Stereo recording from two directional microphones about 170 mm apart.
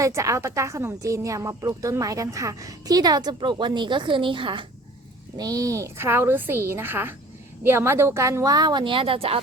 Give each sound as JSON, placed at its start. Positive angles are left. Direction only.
{"t": 0.0, "sound": "a woman's voice", "side_deg": -20}